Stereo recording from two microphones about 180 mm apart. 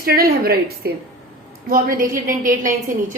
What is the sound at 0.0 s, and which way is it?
A woman's voice, 55° right (ahead or behind).